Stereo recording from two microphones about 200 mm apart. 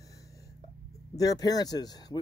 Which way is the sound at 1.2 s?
20° left (ahead or behind).